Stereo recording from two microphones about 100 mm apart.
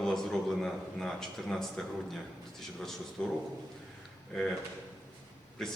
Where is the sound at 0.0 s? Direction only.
5° left (ahead or behind).